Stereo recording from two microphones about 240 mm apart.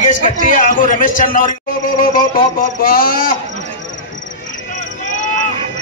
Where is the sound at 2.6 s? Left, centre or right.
Left.